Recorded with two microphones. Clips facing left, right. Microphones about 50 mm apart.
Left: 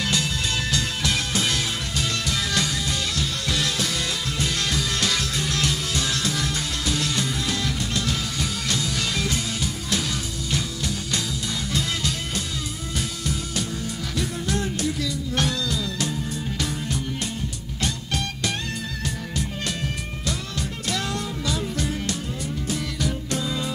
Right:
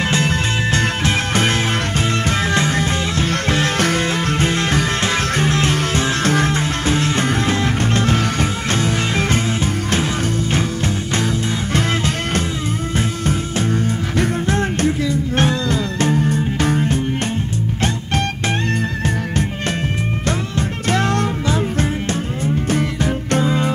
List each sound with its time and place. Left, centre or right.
0.0 s music: right
11.7 s music: right
20.2 s music: right
22.7 s music: right